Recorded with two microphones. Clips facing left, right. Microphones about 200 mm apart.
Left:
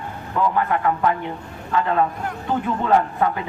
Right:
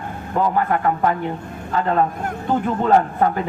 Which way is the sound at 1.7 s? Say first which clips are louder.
Right 1 dB; 40° right (ahead or behind).